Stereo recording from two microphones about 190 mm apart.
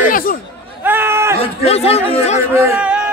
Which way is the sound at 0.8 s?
10° right (ahead or behind).